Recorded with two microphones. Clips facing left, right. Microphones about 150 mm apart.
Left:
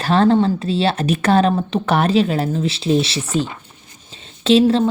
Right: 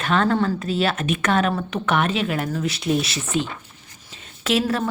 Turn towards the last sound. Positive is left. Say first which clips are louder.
# left 8 dB
turn(degrees=25)  # may be behind; listen again after turning